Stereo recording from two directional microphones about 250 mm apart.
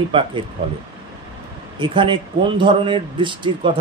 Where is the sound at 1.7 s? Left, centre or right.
Centre.